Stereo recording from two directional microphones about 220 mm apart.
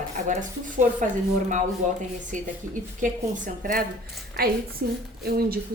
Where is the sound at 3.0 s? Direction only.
35° right (ahead or behind).